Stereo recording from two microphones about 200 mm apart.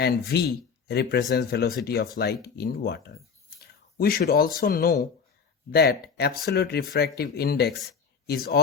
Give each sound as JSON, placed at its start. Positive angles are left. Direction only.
{"t": 0.0, "sound": "speech", "side_deg": 55}